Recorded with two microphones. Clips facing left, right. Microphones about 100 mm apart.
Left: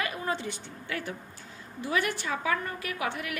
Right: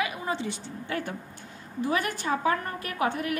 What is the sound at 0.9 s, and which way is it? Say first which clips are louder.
A woman's voice: right 3 dB; 40° right (ahead or behind).